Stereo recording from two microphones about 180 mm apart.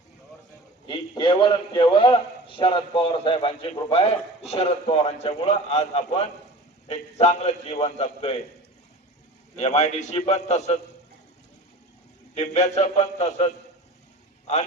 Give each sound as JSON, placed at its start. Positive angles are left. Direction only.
{"t": 0.9, "sound": "a man's voice", "side_deg": 25}
{"t": 9.6, "sound": "a man's voice", "side_deg": 40}
{"t": 12.3, "sound": "a man's voice", "side_deg": 35}